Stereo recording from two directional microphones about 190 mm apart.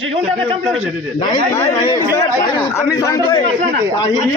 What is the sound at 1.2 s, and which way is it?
A man's voice, 25° left (ahead or behind).